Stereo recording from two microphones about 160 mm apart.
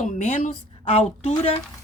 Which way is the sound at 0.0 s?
50° left (ahead or behind).